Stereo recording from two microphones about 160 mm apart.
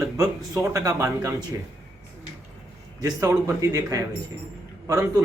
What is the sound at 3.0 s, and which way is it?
A man's voice, 20° right (ahead or behind).